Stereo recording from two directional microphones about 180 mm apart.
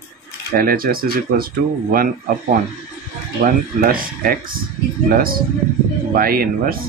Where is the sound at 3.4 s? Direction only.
55° right (ahead or behind).